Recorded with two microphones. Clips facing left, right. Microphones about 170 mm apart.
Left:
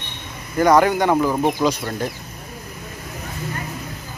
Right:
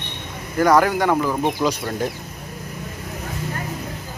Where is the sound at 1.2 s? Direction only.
10° left (ahead or behind).